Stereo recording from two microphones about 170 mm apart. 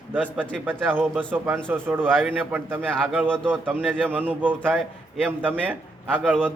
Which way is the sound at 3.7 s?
5° left (ahead or behind).